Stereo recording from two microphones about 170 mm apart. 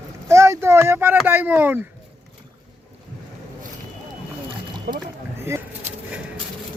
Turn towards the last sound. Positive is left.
turn(degrees=-15)  # may be behind; listen again after turning